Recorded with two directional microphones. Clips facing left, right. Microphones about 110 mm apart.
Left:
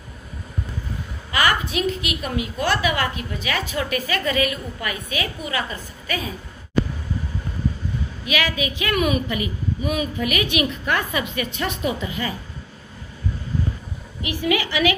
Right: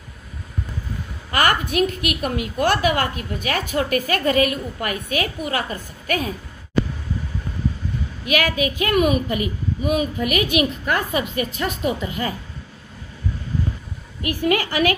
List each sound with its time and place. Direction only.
1.3 s a woman's voice: 50° right (ahead or behind)
8.3 s a woman's voice: 50° right (ahead or behind)
14.2 s a woman's voice: 50° right (ahead or behind)